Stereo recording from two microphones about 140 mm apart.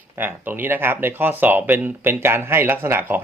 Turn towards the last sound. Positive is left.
turn(degrees=-15)  # may be behind; listen again after turning